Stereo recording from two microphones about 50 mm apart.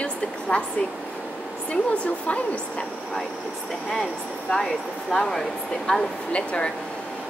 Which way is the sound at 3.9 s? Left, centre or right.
Centre.